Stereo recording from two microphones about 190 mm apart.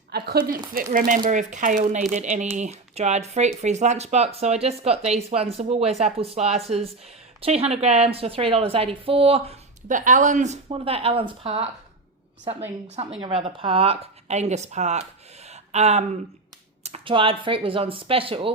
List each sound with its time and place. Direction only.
0.1 s a woman's voice: 55° right (ahead or behind); by 11.7 s 30° right (ahead or behind)
13.2 s a woman's voice: 25° right (ahead or behind)
15.4 s a sound: 35° right (ahead or behind)
16.8 s speech: 30° right (ahead or behind)